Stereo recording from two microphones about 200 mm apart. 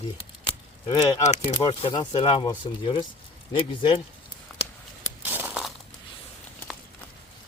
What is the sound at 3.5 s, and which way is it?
Speech, 25° left (ahead or behind).